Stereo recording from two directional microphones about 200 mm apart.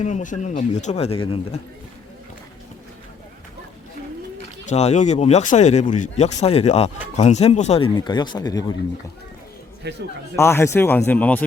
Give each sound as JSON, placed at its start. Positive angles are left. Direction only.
{"t": 0.0, "sound": "speech", "side_deg": 40}
{"t": 4.7, "sound": "speech", "side_deg": 30}
{"t": 7.9, "sound": "speech", "side_deg": 20}
{"t": 9.8, "sound": "a man's voice", "side_deg": -55}
{"t": 10.3, "sound": "a man's voice", "side_deg": 15}